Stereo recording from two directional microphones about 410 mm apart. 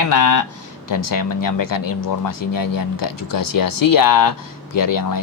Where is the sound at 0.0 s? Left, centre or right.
Left.